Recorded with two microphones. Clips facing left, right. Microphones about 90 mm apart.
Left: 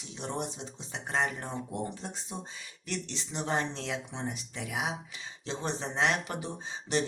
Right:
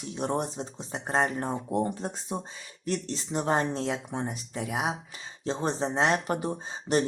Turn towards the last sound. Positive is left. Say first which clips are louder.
# right 5 dB
turn(degrees=-45)  # may be behind; listen again after turning